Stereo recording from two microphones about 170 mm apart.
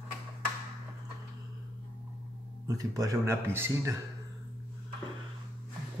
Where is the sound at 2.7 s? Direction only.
20° right (ahead or behind).